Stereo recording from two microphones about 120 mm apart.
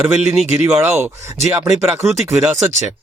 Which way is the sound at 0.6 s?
20° right (ahead or behind).